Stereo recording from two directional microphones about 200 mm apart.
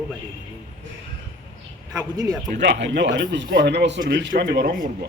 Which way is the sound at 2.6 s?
60° right (ahead or behind).